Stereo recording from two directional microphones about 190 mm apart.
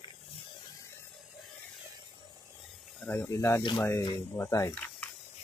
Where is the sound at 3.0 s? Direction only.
10° left (ahead or behind).